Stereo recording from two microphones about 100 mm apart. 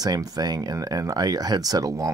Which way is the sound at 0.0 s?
40° right (ahead or behind).